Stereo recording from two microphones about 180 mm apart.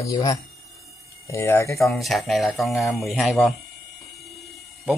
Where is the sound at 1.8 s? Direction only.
Centre (ahead or behind).